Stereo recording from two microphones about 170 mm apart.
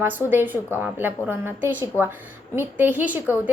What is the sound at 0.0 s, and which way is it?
A woman's voice, 10° right (ahead or behind).